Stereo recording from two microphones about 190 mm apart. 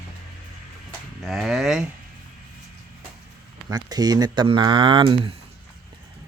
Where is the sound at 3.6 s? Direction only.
20° right (ahead or behind).